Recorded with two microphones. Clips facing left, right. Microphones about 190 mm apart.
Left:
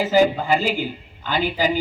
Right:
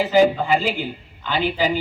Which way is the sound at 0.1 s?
40° left (ahead or behind).